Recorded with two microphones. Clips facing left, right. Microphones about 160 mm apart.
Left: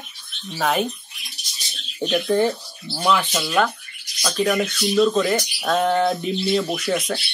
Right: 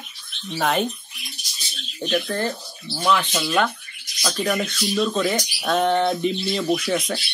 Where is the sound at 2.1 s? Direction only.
10° left (ahead or behind).